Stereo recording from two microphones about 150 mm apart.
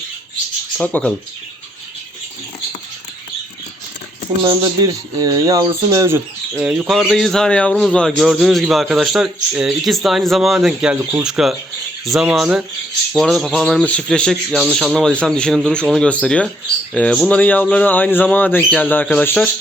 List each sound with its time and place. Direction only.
0.8 s speech: 5° left (ahead or behind)
4.4 s speech: 25° right (ahead or behind)
6.7 s a man's voice: centre (ahead or behind)